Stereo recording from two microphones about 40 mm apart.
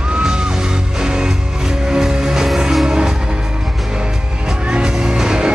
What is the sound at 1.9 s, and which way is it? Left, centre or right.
Music, centre.